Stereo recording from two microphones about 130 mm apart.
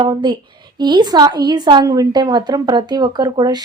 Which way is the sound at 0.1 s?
35° right (ahead or behind).